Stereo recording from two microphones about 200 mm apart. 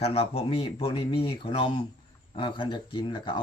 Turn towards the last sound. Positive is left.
turn(degrees=25)  # may be behind; listen again after turning